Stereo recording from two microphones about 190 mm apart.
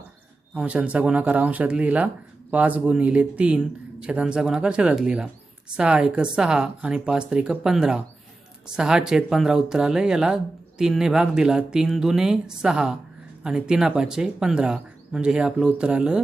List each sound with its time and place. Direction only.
0.5 s speech: 5° right (ahead or behind)